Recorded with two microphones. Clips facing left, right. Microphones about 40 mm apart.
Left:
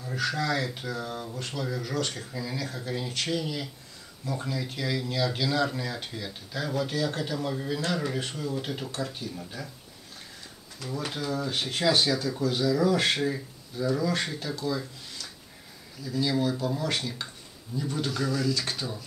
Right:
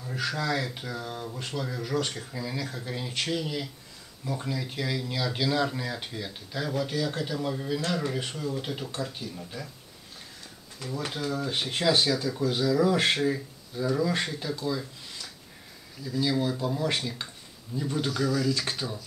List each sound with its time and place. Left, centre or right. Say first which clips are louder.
0.1 s speech: left 1 dB; centre
11.1 s speech: even; centre
16.0 s speech: even; centre
18.1 s speech: right 2 dB; centre
18.5 s speech: right 1 dB; centre